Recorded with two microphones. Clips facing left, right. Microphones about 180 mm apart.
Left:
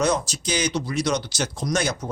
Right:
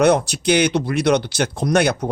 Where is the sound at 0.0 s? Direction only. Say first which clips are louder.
Right 8 dB; 65° right (ahead or behind).